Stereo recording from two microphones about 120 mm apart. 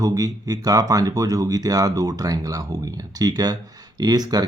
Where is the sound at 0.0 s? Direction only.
30° right (ahead or behind).